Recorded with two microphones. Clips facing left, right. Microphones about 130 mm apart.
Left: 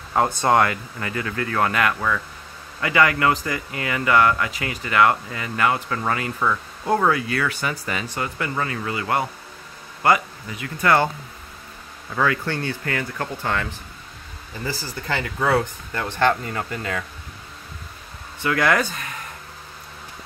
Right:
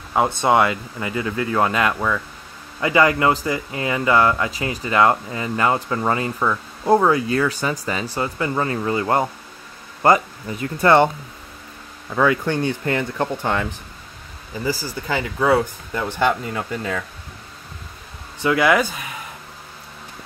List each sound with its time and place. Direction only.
0.3 s speech: 20° right (ahead or behind)
6.4 s speech: 10° right (ahead or behind)
7.2 s speech: 30° right (ahead or behind)
12.2 s speech: 15° right (ahead or behind)
18.4 s speech: 15° right (ahead or behind)